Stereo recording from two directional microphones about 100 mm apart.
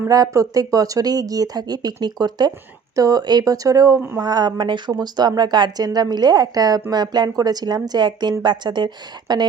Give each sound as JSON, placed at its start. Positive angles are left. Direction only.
{"t": 0.1, "sound": "a woman's voice", "side_deg": -35}